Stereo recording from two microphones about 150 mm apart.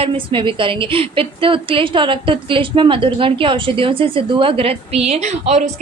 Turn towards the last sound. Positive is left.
turn(degrees=-50)  # may be behind; listen again after turning